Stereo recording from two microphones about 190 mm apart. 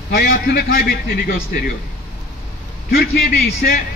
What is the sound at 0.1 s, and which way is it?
A man's voice, 50° left (ahead or behind).